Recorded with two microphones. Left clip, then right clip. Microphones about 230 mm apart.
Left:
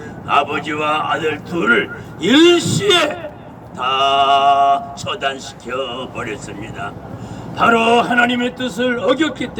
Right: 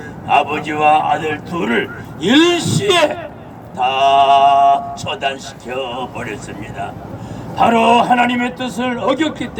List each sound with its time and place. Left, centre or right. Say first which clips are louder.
0.3 s speech: right 2 dB; centre